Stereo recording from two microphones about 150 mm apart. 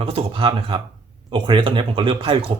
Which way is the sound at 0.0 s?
40° right (ahead or behind).